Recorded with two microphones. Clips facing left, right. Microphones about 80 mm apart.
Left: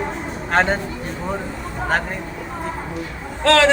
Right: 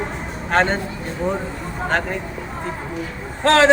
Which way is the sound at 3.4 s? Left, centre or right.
Right.